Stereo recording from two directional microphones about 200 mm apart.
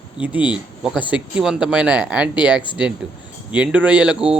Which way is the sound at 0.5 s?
5° right (ahead or behind).